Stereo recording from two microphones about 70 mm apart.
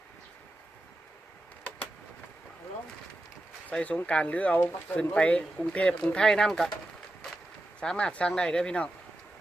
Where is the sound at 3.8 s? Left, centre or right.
Centre.